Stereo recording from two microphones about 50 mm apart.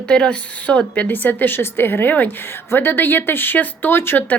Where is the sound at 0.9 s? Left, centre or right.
Left.